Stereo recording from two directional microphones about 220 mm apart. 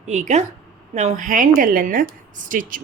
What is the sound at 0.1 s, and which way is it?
Speech, 30° right (ahead or behind).